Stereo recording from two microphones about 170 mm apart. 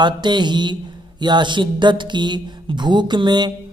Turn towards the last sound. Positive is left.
turn(degrees=-25)  # may be behind; listen again after turning